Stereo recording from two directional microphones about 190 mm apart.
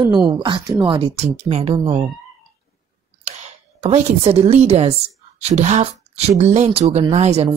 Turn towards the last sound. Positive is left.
turn(degrees=-35)  # may be behind; listen again after turning